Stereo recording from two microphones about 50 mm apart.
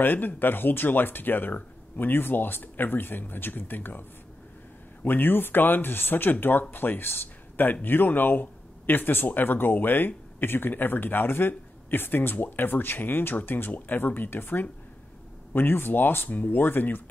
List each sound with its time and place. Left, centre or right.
0.0 s speech: left
5.0 s speech: left